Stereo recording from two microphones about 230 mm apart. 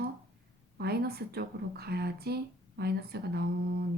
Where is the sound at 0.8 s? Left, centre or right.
Right.